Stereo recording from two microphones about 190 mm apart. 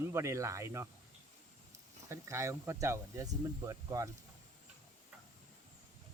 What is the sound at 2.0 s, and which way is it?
Speech, 15° right (ahead or behind).